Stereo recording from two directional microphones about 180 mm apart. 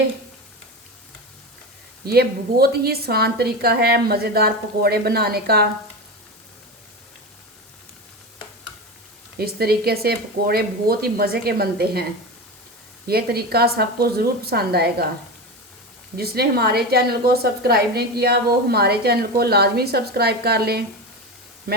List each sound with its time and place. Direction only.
2.0 s a woman's voice: 60° right (ahead or behind)
9.4 s a woman's voice: 60° right (ahead or behind)
13.1 s a woman's voice: 60° right (ahead or behind)
16.1 s a woman's voice: 60° right (ahead or behind)